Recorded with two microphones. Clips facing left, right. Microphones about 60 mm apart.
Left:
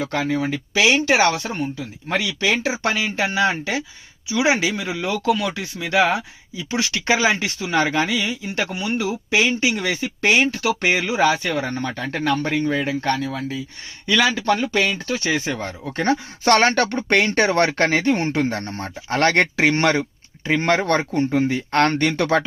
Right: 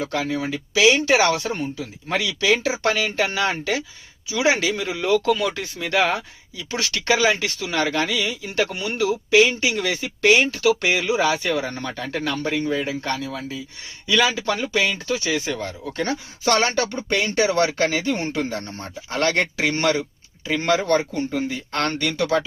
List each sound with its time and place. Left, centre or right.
0.0 s speech: left
0.5 s speech: left
2.8 s speech: centre; by 20.1 s left
20.5 s speech: left
20.7 s speech: left